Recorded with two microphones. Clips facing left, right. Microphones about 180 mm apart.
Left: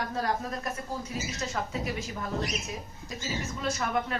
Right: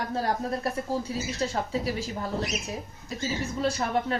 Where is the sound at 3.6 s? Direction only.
30° right (ahead or behind).